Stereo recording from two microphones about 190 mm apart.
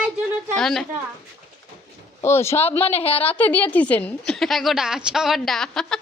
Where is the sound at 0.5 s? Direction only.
Centre (ahead or behind).